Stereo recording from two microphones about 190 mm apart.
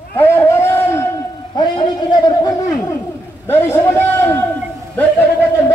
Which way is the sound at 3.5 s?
10° left (ahead or behind).